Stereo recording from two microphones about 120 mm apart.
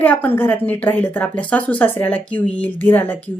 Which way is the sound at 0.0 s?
15° left (ahead or behind).